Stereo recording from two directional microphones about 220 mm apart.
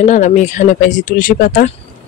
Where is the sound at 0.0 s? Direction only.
35° left (ahead or behind).